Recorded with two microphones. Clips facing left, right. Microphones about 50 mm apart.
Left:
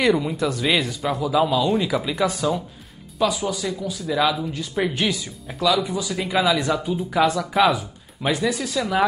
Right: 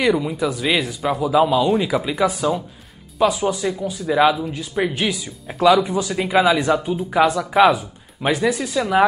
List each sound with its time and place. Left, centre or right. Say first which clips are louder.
0.0 s speech: right 1 dB; centre
3.2 s speech: right 4 dB; right
4.4 s speech: right 2 dB; centre
5.6 s speech: right 6 dB; right
6.1 s speech: right 4 dB; centre
7.5 s speech: right 5 dB; centre
8.2 s speech: right 3 dB; right